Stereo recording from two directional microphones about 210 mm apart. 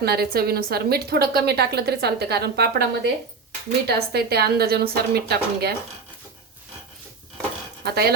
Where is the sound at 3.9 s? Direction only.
50° right (ahead or behind).